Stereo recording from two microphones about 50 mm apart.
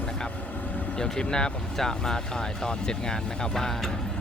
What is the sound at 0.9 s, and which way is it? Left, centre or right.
Speech, centre.